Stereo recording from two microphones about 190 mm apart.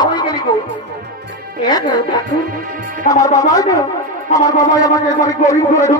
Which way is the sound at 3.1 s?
20° left (ahead or behind).